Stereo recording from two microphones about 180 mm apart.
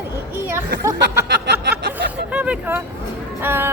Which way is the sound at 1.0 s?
70° right (ahead or behind).